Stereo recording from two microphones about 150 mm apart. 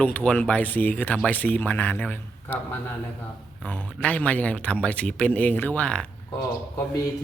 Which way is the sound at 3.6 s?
10° left (ahead or behind).